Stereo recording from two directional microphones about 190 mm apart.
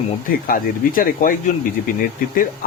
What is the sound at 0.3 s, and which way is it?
Speech, 50° left (ahead or behind).